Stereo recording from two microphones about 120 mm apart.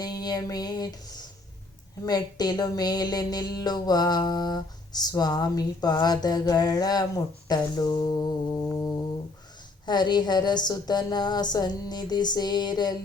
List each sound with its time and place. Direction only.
0.0 s a sound: 35° left (ahead or behind)
2.0 s speech: 35° left (ahead or behind)
8.5 s music: 15° left (ahead or behind)
9.8 s speech: 35° left (ahead or behind)